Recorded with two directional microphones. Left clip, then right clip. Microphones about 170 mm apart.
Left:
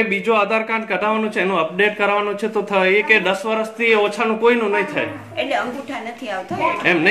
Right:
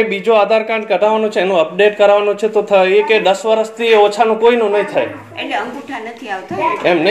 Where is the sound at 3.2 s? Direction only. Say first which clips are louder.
Right 7 dB; 55° left (ahead or behind).